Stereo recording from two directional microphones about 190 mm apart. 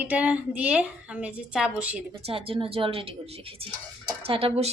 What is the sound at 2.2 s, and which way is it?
A woman's voice, 30° right (ahead or behind).